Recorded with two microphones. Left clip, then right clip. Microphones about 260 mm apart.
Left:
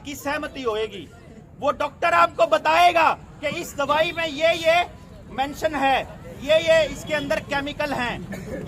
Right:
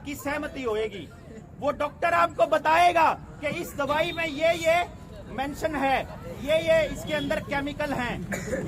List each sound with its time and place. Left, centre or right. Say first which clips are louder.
0.0 s a man's voice: left 3 dB; centre
8.3 s speech: right 3 dB; centre